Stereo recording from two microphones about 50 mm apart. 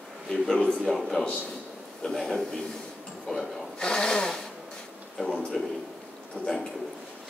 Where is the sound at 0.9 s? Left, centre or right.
Centre.